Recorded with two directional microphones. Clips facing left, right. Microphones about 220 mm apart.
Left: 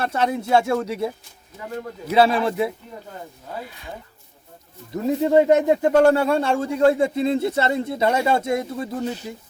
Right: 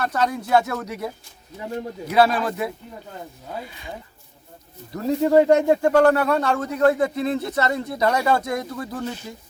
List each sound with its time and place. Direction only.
0.0 s speech: 25° left (ahead or behind)
1.5 s speech: 20° right (ahead or behind)
2.0 s speech: 25° left (ahead or behind)
3.6 s speech: centre (ahead or behind)
4.9 s speech: 20° left (ahead or behind)